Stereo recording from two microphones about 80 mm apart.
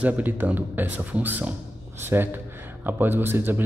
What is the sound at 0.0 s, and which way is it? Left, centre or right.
A man's voice, right.